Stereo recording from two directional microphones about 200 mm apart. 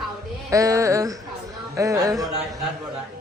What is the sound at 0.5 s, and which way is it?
A woman's voice, 15° right (ahead or behind).